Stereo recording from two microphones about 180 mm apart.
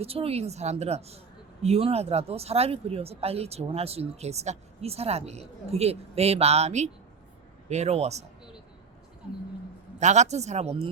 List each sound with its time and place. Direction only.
0.0 s speech: 35° right (ahead or behind)
10.0 s speech: 40° right (ahead or behind)